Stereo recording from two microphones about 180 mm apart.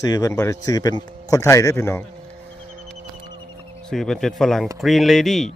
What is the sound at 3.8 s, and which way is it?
Speech, centre (ahead or behind).